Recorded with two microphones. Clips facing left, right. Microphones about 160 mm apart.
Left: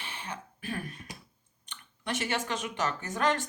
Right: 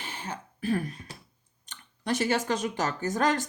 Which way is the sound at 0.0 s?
40° right (ahead or behind).